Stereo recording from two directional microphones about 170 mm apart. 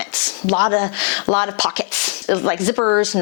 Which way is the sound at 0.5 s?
20° left (ahead or behind).